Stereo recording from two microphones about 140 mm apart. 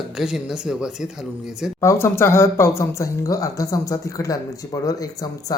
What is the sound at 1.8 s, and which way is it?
Speech, 20° left (ahead or behind).